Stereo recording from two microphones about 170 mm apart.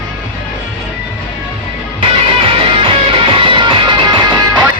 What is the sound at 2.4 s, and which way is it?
Music, 30° right (ahead or behind).